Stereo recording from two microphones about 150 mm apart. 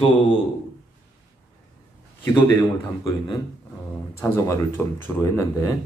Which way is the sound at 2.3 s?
15° left (ahead or behind).